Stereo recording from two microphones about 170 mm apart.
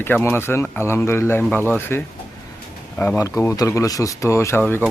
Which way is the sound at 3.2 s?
20° left (ahead or behind).